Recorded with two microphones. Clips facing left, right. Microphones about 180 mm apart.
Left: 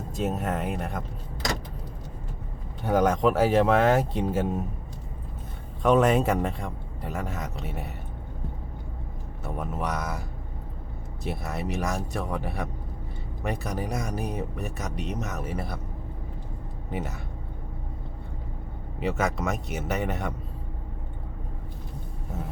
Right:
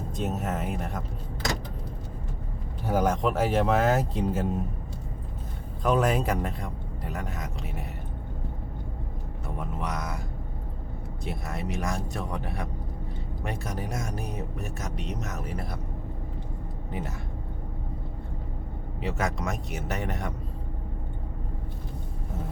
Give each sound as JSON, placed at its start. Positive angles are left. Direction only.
{"t": 0.2, "sound": "speech", "side_deg": 0}
{"t": 2.8, "sound": "speech", "side_deg": -5}
{"t": 5.8, "sound": "speech", "side_deg": 0}
{"t": 9.6, "sound": "speech", "side_deg": 0}
{"t": 16.9, "sound": "speech", "side_deg": 0}
{"t": 18.9, "sound": "speech", "side_deg": 0}